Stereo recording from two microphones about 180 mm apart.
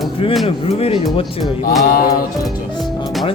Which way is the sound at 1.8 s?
55° left (ahead or behind).